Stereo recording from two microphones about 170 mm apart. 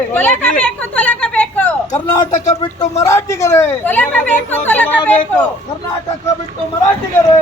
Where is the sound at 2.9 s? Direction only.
20° left (ahead or behind).